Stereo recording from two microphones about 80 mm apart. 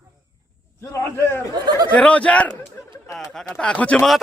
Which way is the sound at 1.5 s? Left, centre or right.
Right.